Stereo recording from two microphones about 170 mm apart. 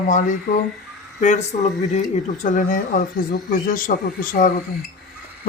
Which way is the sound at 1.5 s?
40° left (ahead or behind).